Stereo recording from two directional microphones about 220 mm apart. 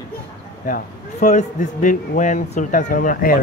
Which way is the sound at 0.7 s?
35° left (ahead or behind).